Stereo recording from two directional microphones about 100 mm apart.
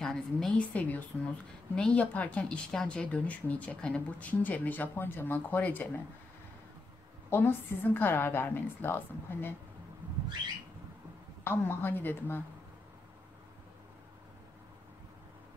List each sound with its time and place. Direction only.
0.0 s a woman's voice: 5° left (ahead or behind)
7.2 s a woman's voice: 20° left (ahead or behind)
11.4 s a woman's voice: 20° left (ahead or behind)